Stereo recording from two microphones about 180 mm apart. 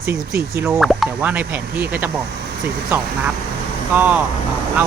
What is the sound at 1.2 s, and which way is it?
Speech, 10° right (ahead or behind).